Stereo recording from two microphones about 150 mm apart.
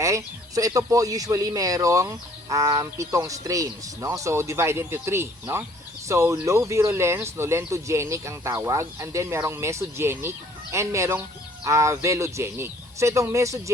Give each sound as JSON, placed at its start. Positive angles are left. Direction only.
{"t": 0.0, "sound": "speech", "side_deg": -20}